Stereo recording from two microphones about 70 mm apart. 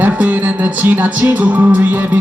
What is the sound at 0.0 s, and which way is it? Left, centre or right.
Music, right.